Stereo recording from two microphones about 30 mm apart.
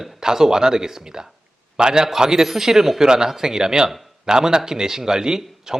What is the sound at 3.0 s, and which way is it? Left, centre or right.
A man's voice, right.